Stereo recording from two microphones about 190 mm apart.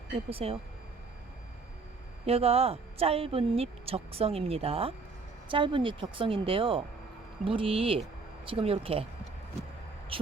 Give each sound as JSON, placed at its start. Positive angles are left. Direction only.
{"t": 0.3, "sound": "a woman's voice", "side_deg": -30}
{"t": 2.2, "sound": "a woman's voice", "side_deg": -30}
{"t": 10.1, "sound": "speech", "side_deg": -30}